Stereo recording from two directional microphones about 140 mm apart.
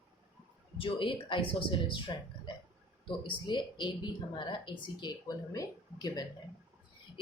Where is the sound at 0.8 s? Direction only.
40° left (ahead or behind).